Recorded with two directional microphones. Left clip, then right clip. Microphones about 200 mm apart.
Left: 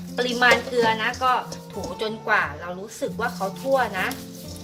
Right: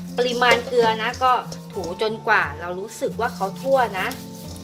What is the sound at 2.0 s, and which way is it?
A woman's voice, 40° right (ahead or behind).